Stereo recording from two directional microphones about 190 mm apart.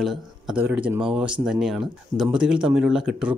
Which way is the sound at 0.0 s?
Centre (ahead or behind).